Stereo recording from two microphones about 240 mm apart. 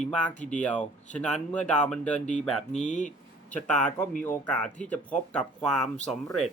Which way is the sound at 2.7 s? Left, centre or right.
Left.